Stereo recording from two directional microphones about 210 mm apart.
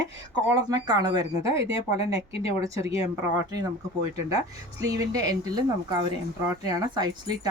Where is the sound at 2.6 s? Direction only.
15° right (ahead or behind).